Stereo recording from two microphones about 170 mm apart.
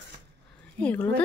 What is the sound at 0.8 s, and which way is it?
Speech, 10° left (ahead or behind).